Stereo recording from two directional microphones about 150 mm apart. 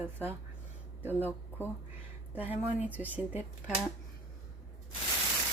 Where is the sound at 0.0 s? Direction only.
15° right (ahead or behind).